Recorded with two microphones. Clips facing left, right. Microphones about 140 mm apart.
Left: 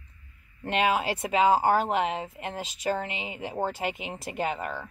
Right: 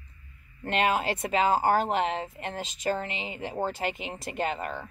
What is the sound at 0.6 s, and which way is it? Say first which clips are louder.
Speech: left 1 dB; 5° left (ahead or behind).